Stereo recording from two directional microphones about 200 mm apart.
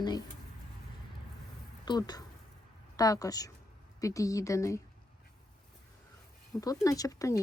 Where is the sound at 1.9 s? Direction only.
20° left (ahead or behind).